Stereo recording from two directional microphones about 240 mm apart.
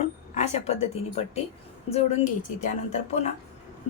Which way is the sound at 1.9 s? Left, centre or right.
Left.